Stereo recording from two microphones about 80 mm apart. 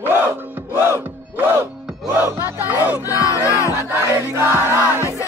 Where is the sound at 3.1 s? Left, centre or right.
Left.